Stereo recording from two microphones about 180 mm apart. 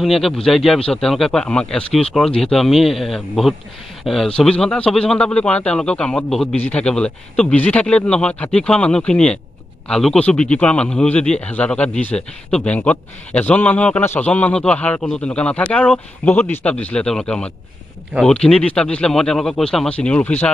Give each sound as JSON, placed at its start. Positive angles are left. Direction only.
{"t": 0.0, "sound": "a man's voice", "side_deg": 0}